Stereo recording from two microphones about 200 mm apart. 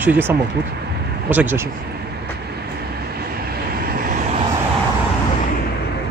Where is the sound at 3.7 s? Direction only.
45° right (ahead or behind).